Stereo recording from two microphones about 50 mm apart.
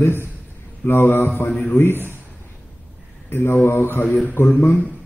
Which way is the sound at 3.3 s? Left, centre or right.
Left.